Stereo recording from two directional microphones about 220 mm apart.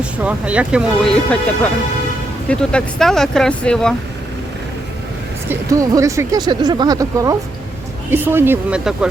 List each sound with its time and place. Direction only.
0.0 s speech: 5° right (ahead or behind)
5.5 s speech: 15° right (ahead or behind)